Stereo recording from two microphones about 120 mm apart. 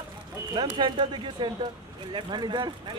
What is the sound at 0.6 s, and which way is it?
A man's voice, 40° right (ahead or behind).